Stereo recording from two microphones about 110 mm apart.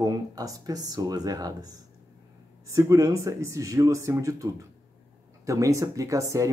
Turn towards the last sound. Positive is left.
turn(degrees=-30)  # may be behind; listen again after turning